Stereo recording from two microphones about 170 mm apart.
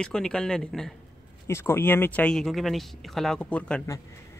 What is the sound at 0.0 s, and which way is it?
Speech, 5° left (ahead or behind).